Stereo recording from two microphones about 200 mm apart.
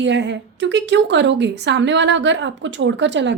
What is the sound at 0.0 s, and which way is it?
A woman's voice, 65° right (ahead or behind).